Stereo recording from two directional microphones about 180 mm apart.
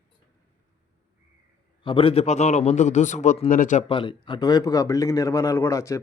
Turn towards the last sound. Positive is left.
turn(degrees=15)  # may be behind; listen again after turning